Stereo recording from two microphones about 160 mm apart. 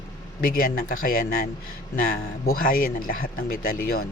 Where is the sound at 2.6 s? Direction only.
65° left (ahead or behind).